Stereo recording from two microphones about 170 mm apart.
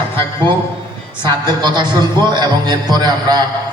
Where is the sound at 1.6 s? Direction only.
25° right (ahead or behind).